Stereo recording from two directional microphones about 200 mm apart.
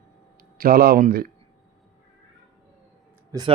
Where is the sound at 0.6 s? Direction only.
50° right (ahead or behind).